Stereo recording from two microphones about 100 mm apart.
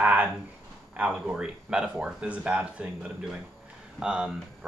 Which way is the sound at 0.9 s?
10° right (ahead or behind).